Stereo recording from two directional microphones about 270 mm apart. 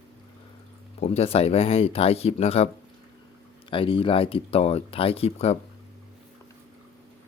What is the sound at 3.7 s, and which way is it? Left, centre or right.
Speech, centre.